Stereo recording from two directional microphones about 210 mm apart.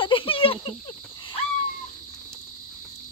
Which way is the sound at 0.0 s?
25° left (ahead or behind).